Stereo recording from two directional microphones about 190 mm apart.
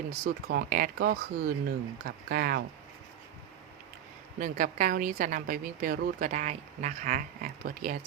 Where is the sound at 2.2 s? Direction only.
50° right (ahead or behind).